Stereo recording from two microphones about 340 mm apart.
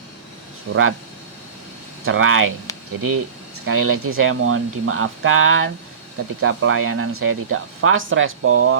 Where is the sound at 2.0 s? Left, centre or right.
Right.